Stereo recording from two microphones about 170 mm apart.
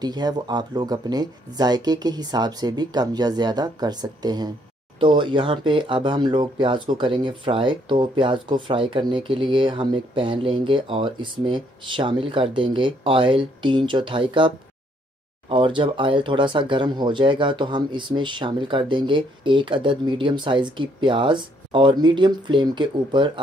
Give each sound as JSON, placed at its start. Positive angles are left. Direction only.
{"t": 0.0, "sound": "speech", "side_deg": -25}